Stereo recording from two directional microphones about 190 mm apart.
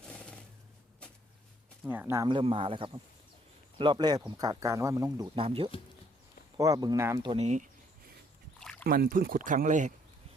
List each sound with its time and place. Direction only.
0.0 s a sound: 5° left (ahead or behind)
1.8 s speech: 10° right (ahead or behind)
2.2 s speech: 25° right (ahead or behind)
7.3 s speech: 35° right (ahead or behind)
8.8 s speech: 50° right (ahead or behind)